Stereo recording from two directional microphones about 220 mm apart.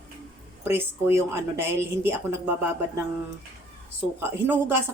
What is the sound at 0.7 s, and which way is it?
Speech, 10° right (ahead or behind).